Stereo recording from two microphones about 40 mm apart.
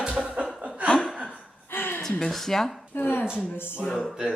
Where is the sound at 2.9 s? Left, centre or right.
Left.